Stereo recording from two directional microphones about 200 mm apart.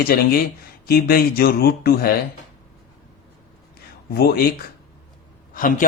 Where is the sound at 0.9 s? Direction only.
50° left (ahead or behind).